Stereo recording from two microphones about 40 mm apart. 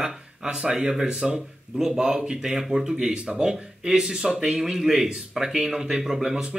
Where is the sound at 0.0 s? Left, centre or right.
Centre.